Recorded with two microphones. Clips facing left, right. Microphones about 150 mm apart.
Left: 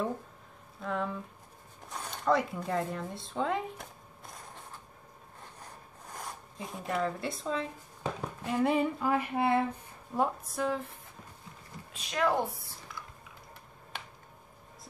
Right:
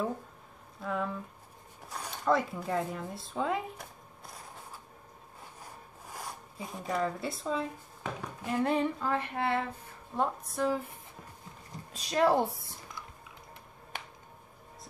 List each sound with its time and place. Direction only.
0.7 s speech: centre (ahead or behind)
5.6 s zipper: 5° right (ahead or behind)
8.5 s female singing: 5° left (ahead or behind)
10.1 s speech: 5° left (ahead or behind)
11.9 s speech: 35° right (ahead or behind)